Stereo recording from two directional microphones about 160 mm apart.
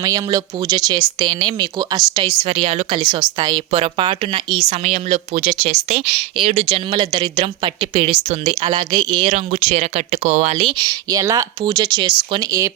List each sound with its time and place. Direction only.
0.0 s speech: 25° right (ahead or behind)